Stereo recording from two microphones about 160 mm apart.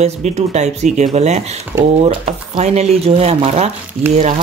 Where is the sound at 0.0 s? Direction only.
45° right (ahead or behind).